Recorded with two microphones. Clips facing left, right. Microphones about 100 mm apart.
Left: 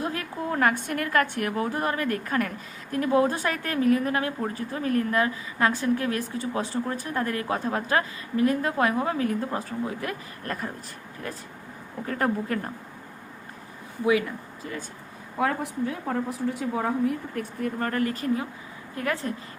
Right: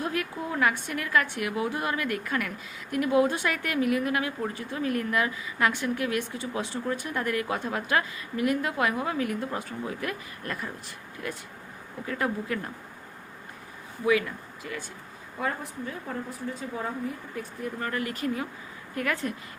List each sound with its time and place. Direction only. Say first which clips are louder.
0.0 s a sound: even; 30° left (ahead or behind)
0.5 s a woman's voice: left 3 dB; 45° left (ahead or behind)
12.0 s speech: left 3 dB; 45° left (ahead or behind)
14.0 s speech: left 2 dB; 25° left (ahead or behind)
15.4 s speech: left 6 dB; 75° left (ahead or behind); by 19.3 s 30° left (ahead or behind)